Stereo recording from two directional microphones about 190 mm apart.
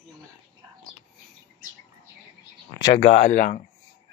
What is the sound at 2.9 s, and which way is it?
Speech, 40° left (ahead or behind).